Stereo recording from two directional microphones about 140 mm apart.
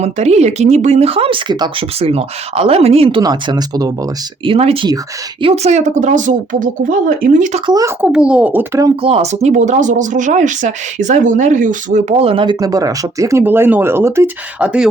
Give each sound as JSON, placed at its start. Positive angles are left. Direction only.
{"t": 0.0, "sound": "speech", "side_deg": -50}
{"t": 2.0, "sound": "speech", "side_deg": -45}
{"t": 3.2, "sound": "speech", "side_deg": -30}
{"t": 4.4, "sound": "speech", "side_deg": -45}
{"t": 7.7, "sound": "speech", "side_deg": -25}
{"t": 8.0, "sound": "speech", "side_deg": -5}
{"t": 9.0, "sound": "speech", "side_deg": -45}
{"t": 12.5, "sound": "speech", "side_deg": -25}